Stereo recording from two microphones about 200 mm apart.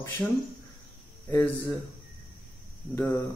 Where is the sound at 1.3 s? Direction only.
15° left (ahead or behind).